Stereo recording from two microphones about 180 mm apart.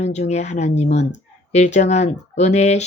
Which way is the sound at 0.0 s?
40° left (ahead or behind).